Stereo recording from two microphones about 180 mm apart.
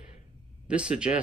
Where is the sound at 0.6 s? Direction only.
5° right (ahead or behind).